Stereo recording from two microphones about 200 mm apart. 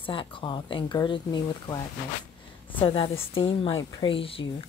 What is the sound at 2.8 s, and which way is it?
Speech, 25° left (ahead or behind).